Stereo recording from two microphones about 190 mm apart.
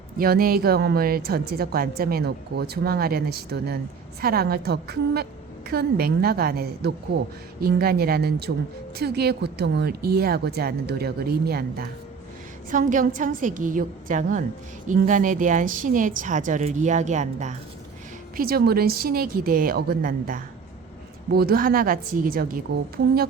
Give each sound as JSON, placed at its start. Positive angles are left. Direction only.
{"t": 0.2, "sound": "a woman's voice", "side_deg": -50}
{"t": 12.7, "sound": "a woman's voice", "side_deg": -45}
{"t": 18.3, "sound": "a woman's voice", "side_deg": -50}